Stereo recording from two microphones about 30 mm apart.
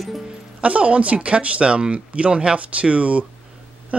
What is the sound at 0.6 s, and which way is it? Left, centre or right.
Speech, right.